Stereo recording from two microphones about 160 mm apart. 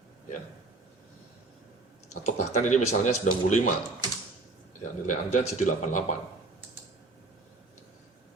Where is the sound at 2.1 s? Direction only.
45° left (ahead or behind).